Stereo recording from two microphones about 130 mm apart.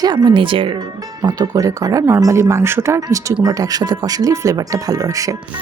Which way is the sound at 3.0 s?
25° right (ahead or behind).